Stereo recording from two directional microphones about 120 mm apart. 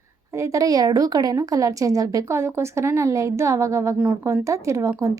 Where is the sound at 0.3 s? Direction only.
25° right (ahead or behind).